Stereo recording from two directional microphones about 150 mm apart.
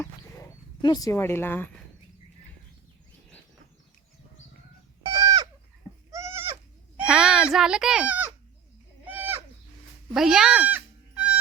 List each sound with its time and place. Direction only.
0.8 s speech: 25° left (ahead or behind)
5.1 s goat: 25° right (ahead or behind)
7.0 s a sound: 5° right (ahead or behind)
9.0 s goat: 15° right (ahead or behind)
10.2 s cat: 5° right (ahead or behind)